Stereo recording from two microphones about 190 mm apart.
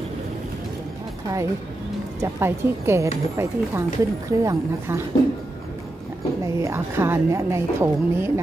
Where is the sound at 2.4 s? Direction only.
15° right (ahead or behind).